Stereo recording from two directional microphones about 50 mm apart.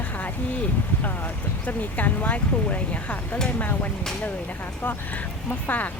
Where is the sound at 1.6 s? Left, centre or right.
Left.